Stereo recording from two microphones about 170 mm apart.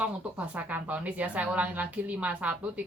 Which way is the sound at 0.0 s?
10° right (ahead or behind).